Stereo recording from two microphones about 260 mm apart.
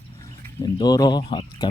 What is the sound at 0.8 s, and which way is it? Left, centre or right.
Speech, centre.